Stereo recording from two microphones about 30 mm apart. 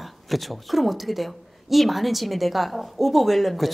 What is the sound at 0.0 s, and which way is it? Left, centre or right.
A woman's voice, centre.